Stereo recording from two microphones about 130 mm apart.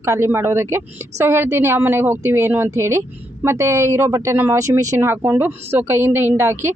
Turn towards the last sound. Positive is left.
turn(degrees=-20)  # may be behind; listen again after turning